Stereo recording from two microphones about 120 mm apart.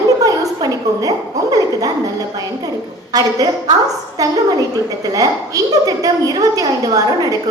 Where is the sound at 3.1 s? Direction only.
30° right (ahead or behind).